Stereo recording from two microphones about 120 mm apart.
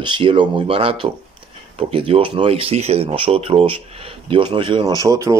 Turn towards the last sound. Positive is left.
turn(degrees=-30)  # may be behind; listen again after turning